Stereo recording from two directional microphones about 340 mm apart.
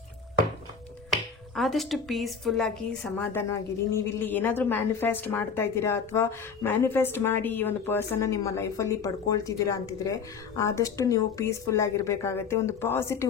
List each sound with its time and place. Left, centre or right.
1.5 s a woman's voice: centre